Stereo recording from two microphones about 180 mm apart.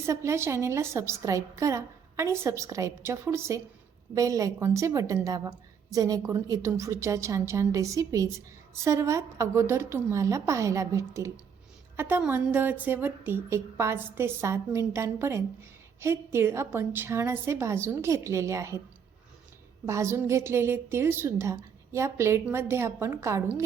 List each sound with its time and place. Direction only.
0.0 s a woman's voice: 15° right (ahead or behind)
19.8 s a woman's voice: 15° right (ahead or behind)